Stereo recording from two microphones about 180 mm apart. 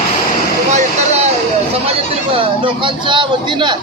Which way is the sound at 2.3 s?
30° right (ahead or behind).